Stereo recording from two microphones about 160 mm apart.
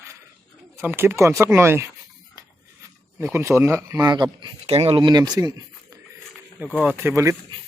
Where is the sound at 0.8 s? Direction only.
15° right (ahead or behind).